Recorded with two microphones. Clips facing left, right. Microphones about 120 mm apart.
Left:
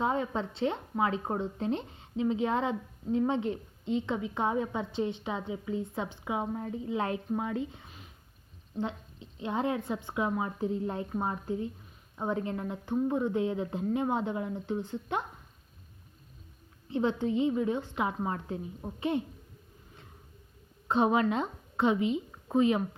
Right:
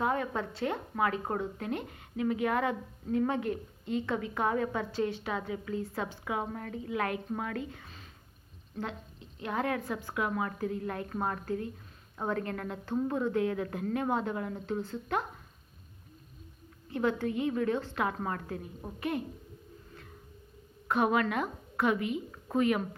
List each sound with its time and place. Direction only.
0.0 s a woman's voice: 20° left (ahead or behind)
16.9 s speech: 20° left (ahead or behind)
20.8 s speech: 25° left (ahead or behind)